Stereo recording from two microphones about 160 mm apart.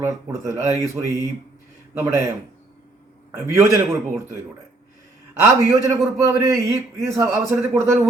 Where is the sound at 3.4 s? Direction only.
20° right (ahead or behind).